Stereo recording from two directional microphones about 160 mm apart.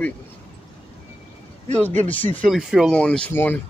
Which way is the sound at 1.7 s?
10° left (ahead or behind).